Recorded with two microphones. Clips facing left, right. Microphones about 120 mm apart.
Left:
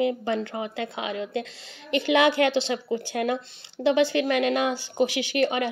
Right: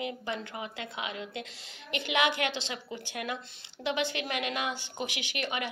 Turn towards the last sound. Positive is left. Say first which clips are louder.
# left 11 dB
turn(degrees=35)  # may be behind; listen again after turning